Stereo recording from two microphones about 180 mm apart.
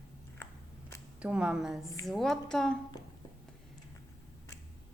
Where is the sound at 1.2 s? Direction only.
5° right (ahead or behind).